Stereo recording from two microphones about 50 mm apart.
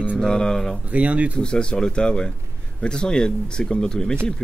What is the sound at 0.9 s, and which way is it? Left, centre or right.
Speech, right.